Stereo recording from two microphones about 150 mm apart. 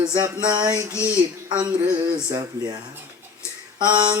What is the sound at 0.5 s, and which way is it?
Speech, 25° right (ahead or behind).